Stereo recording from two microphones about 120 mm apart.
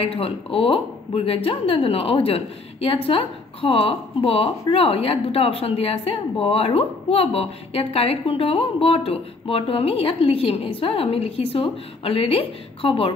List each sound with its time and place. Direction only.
0.0 s speech: 55° left (ahead or behind)